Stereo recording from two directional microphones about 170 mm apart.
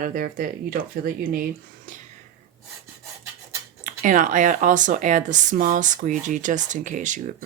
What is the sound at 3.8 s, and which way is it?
Speech, 50° right (ahead or behind).